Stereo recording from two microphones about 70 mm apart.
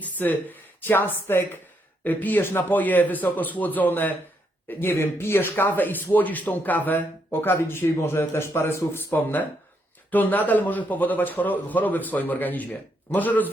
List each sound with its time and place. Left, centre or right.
0.0 s a man's voice: left
9.1 s a man's voice: left